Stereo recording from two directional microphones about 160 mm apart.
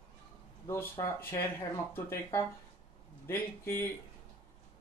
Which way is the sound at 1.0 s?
25° left (ahead or behind).